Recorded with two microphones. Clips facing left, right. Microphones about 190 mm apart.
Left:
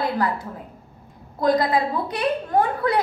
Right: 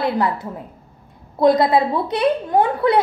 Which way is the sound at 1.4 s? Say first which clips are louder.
Right 5 dB; 25° right (ahead or behind).